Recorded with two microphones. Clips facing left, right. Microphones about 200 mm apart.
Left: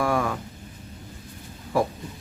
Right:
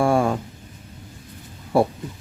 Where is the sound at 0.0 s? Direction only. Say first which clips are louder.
Right 5 dB; 30° right (ahead or behind).